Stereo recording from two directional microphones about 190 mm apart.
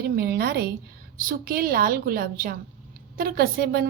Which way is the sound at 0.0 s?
55° right (ahead or behind).